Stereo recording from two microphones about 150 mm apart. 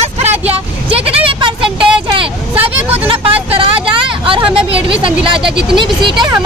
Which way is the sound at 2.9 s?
35° right (ahead or behind).